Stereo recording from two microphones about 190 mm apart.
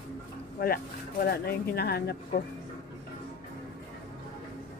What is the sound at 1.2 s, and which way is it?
Speech, 55° left (ahead or behind).